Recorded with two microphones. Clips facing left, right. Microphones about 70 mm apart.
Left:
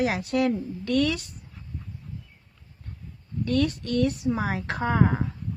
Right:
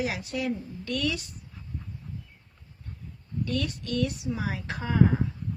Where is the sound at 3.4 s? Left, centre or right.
Left.